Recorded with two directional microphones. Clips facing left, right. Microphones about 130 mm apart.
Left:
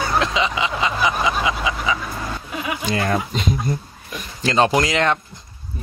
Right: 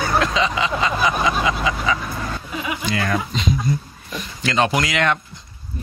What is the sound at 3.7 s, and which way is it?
Speech, 55° left (ahead or behind).